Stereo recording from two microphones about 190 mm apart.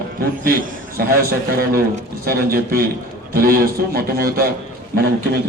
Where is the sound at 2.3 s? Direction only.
50° right (ahead or behind).